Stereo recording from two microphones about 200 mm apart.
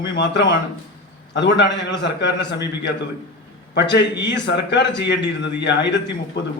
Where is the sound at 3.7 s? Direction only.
60° left (ahead or behind).